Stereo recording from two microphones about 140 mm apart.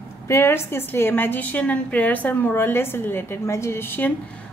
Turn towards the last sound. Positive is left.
turn(degrees=15)  # may be behind; listen again after turning